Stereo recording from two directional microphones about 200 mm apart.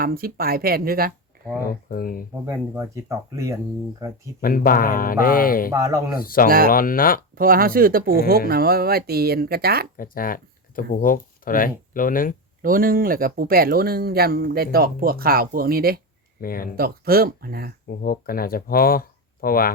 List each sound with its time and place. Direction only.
0.0 s speech: 45° right (ahead or behind)
1.9 s speech: 45° left (ahead or behind)
2.5 s speech: 15° right (ahead or behind)
4.4 s speech: 45° left (ahead or behind)
5.7 s speech: 15° right (ahead or behind)
6.1 s speech: 45° left (ahead or behind)
7.3 s speech: 45° right (ahead or behind)
10.0 s speech: 45° left (ahead or behind)
12.6 s speech: 45° right (ahead or behind)
16.4 s speech: 45° left (ahead or behind)
16.7 s speech: 50° right (ahead or behind)
17.8 s speech: 45° left (ahead or behind)